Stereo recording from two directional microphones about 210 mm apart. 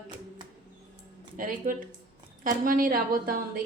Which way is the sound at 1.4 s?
40° right (ahead or behind).